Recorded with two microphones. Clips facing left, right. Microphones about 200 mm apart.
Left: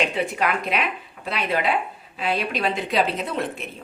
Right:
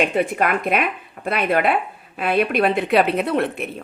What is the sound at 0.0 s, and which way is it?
Speech, 50° right (ahead or behind).